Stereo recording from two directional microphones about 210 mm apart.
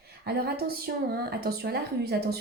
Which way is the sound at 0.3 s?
50° right (ahead or behind).